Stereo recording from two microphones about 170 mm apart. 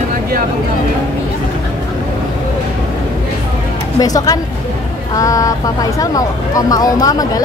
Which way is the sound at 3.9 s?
20° left (ahead or behind).